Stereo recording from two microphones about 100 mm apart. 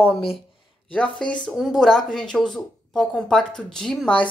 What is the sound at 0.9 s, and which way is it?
Speech, 10° left (ahead or behind).